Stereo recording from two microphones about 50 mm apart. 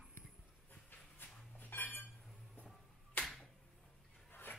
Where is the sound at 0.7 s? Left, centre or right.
Left.